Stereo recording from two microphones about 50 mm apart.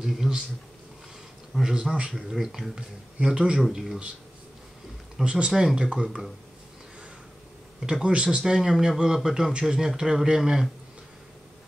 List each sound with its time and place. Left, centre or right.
0.0 s a man's voice: centre
1.5 s a man's voice: centre
2.1 s a man's voice: centre
5.2 s a man's voice: right
6.0 s speech: centre
7.8 s a man's voice: centre